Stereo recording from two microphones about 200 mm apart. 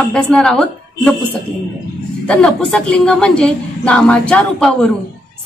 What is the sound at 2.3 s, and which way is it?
Speech, 5° left (ahead or behind).